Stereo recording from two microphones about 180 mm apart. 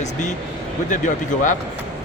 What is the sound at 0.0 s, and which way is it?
Speech, 40° left (ahead or behind).